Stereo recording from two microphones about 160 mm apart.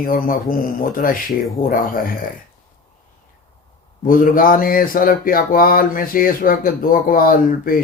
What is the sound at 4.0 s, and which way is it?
Speech, 60° left (ahead or behind).